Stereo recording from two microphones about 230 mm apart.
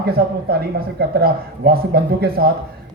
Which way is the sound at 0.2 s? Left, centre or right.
Right.